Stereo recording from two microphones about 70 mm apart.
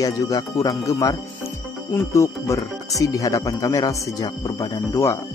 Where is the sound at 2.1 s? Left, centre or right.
Left.